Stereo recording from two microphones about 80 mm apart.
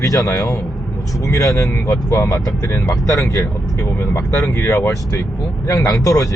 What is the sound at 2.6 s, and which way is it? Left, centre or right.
Speech, left.